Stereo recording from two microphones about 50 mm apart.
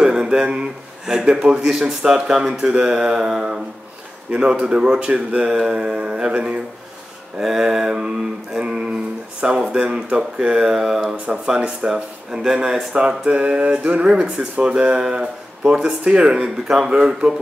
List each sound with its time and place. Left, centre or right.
0.0 s speech: centre
4.3 s speech: right
11.5 s speech: right
11.9 s speech: centre